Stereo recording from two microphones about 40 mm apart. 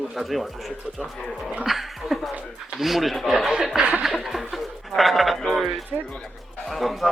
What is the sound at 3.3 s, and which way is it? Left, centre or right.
Speech, centre.